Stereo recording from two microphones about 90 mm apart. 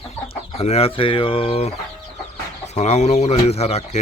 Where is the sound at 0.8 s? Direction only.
85° left.